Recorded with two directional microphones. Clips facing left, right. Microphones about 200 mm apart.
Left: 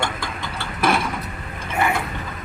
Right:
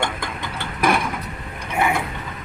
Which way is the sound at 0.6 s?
15° right (ahead or behind).